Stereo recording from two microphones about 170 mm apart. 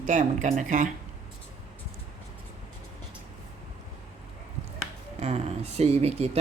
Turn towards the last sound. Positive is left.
turn(degrees=-40)  # may be behind; listen again after turning